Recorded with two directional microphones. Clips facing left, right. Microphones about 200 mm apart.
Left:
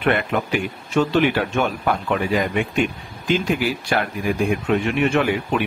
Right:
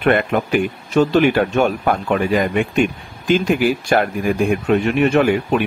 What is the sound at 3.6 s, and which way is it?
Speech, 50° right (ahead or behind).